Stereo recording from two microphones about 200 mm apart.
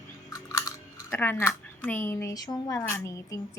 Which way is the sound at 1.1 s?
10° left (ahead or behind).